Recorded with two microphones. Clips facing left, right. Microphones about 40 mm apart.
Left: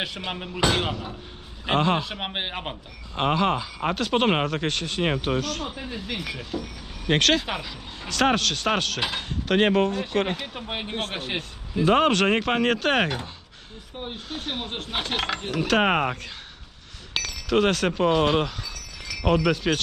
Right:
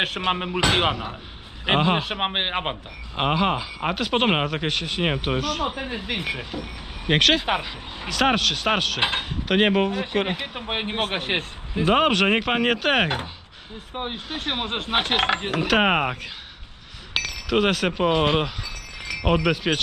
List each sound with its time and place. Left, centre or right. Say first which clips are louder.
0.0 s speech: right 7 dB; right
2.0 s speech: right 4 dB; right
3.2 s speech: right 1 dB; centre
4.5 s speech: right 1 dB; centre
5.7 s speech: right 4 dB; right; by 7.4 s centre
7.4 s speech: right 6 dB; right
8.1 s a man's voice: right 1 dB; centre; by 11.8 s right
11.8 s speech: even; centre
13.9 s speech: right 4 dB; right
15.6 s speech: even; centre